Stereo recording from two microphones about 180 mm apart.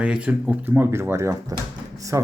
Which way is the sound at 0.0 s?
5° right (ahead or behind).